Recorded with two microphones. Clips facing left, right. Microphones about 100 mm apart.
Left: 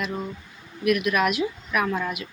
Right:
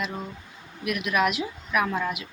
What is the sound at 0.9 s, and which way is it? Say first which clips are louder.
Speech: left 4 dB; 20° right (ahead or behind).